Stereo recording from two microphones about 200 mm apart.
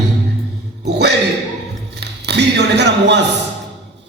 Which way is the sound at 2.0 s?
55° right (ahead or behind).